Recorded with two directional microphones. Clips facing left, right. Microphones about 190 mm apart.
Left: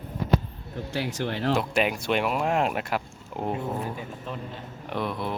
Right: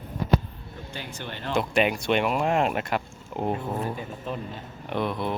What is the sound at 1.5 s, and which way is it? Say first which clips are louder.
Speech: right 2 dB; centre (ahead or behind).